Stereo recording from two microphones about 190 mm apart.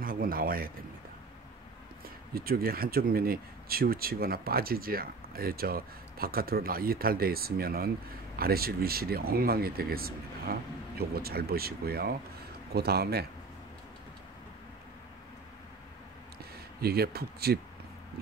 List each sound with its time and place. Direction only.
0.0 s a man's voice: 50° right (ahead or behind)
2.3 s a man's voice: 50° right (ahead or behind)
16.8 s a man's voice: 55° right (ahead or behind)